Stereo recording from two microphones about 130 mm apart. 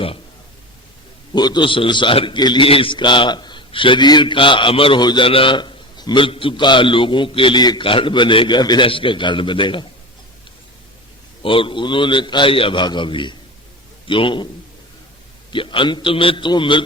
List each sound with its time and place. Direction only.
1.3 s a man's voice: 35° left (ahead or behind)
11.4 s a man's voice: 40° left (ahead or behind)
15.5 s a man's voice: 40° left (ahead or behind)